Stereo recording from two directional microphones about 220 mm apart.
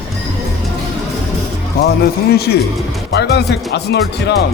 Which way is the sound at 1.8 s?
45° left (ahead or behind).